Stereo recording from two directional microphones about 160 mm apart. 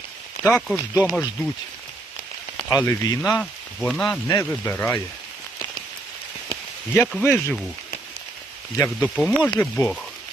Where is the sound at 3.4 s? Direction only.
5° left (ahead or behind).